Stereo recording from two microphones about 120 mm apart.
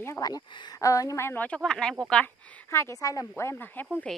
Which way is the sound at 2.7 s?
25° left (ahead or behind).